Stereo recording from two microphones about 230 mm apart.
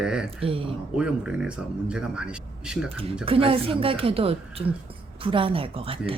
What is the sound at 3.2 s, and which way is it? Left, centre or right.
A woman's voice, right.